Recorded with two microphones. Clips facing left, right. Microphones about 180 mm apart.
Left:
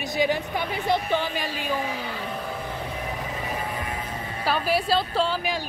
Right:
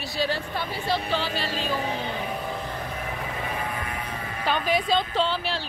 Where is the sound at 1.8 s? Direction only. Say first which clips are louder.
Right 2 dB; 30° right (ahead or behind).